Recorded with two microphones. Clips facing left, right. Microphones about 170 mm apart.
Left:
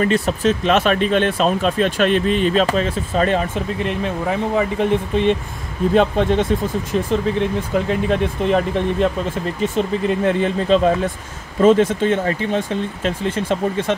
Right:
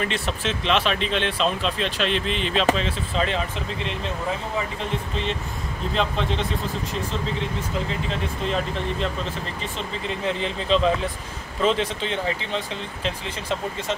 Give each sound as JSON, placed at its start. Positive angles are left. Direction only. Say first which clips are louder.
{"t": 0.0, "sound": "speech", "louder": "left 9 dB", "side_deg": 40}